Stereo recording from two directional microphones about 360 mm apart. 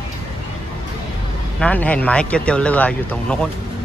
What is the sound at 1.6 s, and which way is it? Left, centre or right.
Speech, centre.